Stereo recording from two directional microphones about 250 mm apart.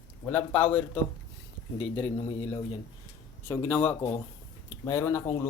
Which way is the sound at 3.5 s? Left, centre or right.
Centre.